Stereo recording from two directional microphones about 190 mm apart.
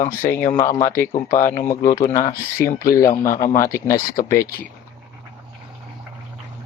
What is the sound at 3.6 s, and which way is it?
Speech, 15° left (ahead or behind).